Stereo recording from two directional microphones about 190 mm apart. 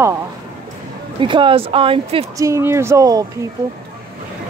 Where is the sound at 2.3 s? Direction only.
15° right (ahead or behind).